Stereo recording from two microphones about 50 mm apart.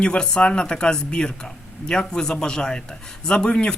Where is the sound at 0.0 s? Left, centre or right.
Centre.